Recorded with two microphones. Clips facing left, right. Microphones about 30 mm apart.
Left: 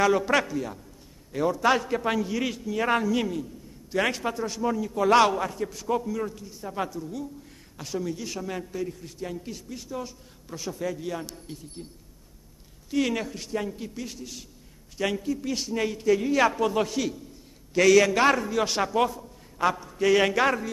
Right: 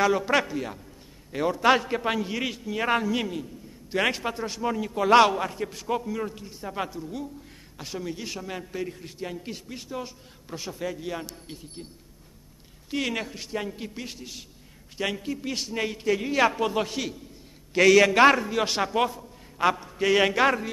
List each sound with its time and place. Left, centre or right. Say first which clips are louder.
0.0 s a man's voice: left 1 dB; centre
0.4 s a man's voice: even; right
4.9 s a man's voice: right 2 dB; right
8.4 s a man's voice: left 2 dB; centre
8.7 s a man's voice: even; right
11.4 s a man's voice: left 1 dB; right
12.9 s a man's voice: left 3 dB; right
13.3 s a man's voice: left 1 dB; right
15.0 s a man's voice: left 2 dB; centre
15.2 s a man's voice: left 2 dB; right
18.9 s a man's voice: left 1 dB; right